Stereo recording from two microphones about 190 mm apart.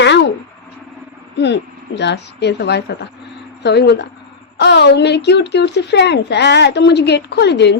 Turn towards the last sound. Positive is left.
turn(degrees=65)  # may be behind; listen again after turning